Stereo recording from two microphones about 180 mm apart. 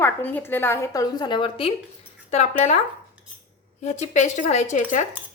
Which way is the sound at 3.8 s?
40° left (ahead or behind).